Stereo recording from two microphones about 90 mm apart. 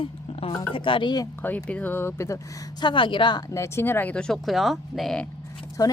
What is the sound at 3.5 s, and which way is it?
Speech, 30° left (ahead or behind).